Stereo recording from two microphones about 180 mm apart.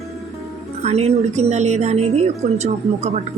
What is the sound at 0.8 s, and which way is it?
Speech, 35° right (ahead or behind).